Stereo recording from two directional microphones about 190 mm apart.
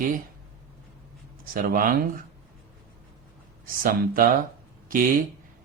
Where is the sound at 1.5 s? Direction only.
50° right (ahead or behind).